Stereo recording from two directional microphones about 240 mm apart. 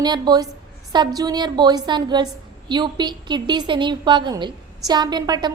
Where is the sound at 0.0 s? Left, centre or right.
Centre.